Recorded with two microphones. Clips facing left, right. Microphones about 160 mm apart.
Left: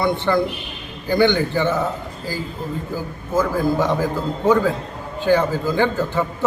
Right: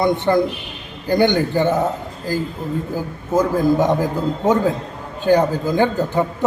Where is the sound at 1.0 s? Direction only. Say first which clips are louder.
Right 1 dB; 45° right (ahead or behind).